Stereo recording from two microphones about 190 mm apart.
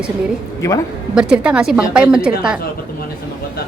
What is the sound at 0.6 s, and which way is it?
Speech, 15° left (ahead or behind).